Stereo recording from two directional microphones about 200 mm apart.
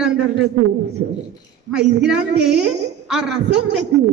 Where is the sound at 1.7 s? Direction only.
5° right (ahead or behind).